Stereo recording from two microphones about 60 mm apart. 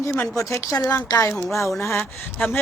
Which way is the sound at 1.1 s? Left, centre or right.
Left.